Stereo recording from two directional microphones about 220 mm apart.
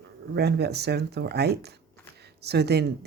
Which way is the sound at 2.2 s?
50° right (ahead or behind).